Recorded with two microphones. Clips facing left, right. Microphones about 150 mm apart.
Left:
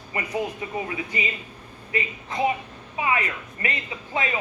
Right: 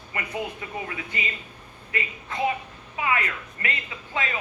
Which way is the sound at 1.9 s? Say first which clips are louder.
Left 3 dB; 20° left (ahead or behind).